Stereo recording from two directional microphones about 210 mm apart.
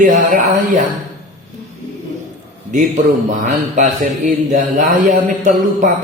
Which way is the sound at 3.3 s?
40° right (ahead or behind).